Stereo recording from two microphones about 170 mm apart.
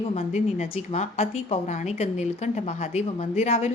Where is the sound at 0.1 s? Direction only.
40° left (ahead or behind).